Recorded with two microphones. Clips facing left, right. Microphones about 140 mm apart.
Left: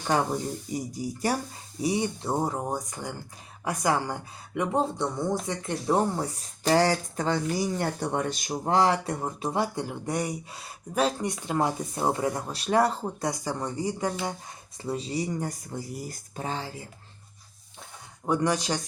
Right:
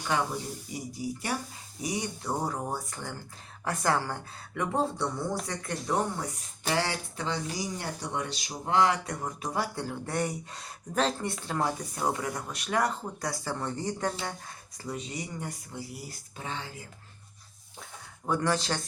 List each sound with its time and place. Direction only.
0.1 s speech: 40° left (ahead or behind)
1.8 s speech: 30° left (ahead or behind)
13.3 s speech: 15° left (ahead or behind)
14.8 s speech: 30° left (ahead or behind)
18.3 s speech: 15° left (ahead or behind)